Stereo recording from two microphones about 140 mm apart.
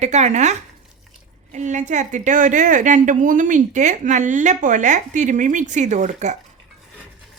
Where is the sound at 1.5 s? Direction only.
60° right (ahead or behind).